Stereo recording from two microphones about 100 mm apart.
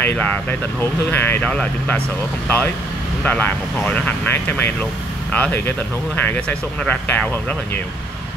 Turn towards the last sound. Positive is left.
turn(degrees=15)  # may be behind; listen again after turning